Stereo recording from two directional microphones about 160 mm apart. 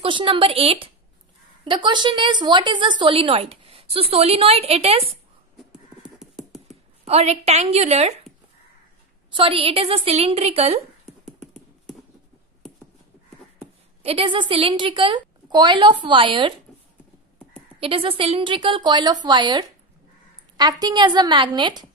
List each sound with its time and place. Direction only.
0.0 s a woman's voice: 30° right (ahead or behind)
6.1 s a sound: centre (ahead or behind)
7.1 s a woman's voice: 40° right (ahead or behind)
9.3 s a woman's voice: 30° right (ahead or behind)
11.2 s a sound: centre (ahead or behind)
14.0 s a woman's voice: 30° right (ahead or behind)
17.7 s a woman's voice: 35° right (ahead or behind)